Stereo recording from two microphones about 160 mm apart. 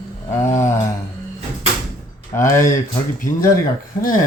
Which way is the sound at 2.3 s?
15° left (ahead or behind).